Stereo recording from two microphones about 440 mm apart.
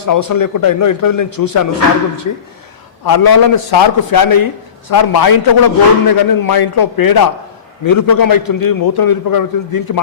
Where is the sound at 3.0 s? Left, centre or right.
Left.